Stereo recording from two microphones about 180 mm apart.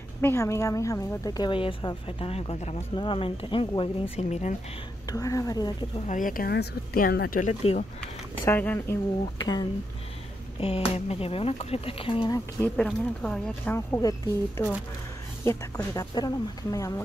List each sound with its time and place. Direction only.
0.2 s a woman's voice: 15° left (ahead or behind); by 4.6 s 40° left (ahead or behind)
5.0 s a woman's voice: 20° left (ahead or behind)
6.0 s speech: 45° left (ahead or behind)
8.5 s speech: 10° left (ahead or behind)
9.4 s a woman's voice: 25° left (ahead or behind)
12.6 s a woman's voice: 5° left (ahead or behind)